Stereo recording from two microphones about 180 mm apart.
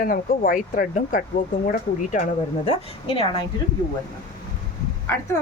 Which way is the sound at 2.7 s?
30° left (ahead or behind).